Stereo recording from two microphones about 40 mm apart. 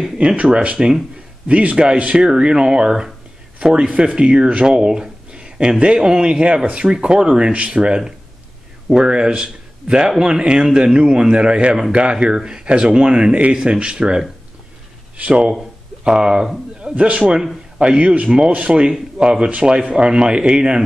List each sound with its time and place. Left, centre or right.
0.4 s speech: right
1.5 s speech: right
16.1 s speech: centre
16.9 s speech: right